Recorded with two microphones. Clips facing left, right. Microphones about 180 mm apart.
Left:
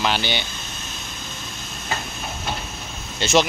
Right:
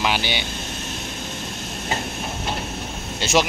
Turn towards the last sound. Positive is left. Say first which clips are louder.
# left 1 dB
turn(degrees=-10)  # may be behind; listen again after turning